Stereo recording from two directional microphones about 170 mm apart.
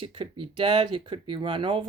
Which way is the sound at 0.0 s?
30° right (ahead or behind).